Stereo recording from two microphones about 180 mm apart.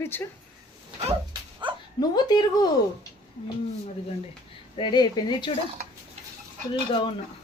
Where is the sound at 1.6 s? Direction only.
25° right (ahead or behind).